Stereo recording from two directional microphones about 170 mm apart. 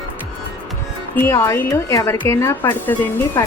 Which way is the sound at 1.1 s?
15° left (ahead or behind).